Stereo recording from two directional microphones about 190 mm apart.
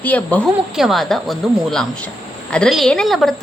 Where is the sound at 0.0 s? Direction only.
10° left (ahead or behind).